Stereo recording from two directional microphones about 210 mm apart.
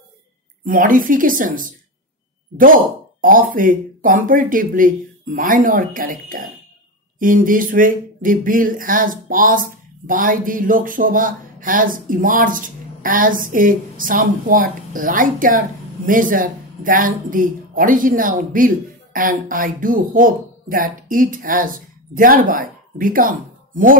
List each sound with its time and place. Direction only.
0.7 s speech: 40° right (ahead or behind)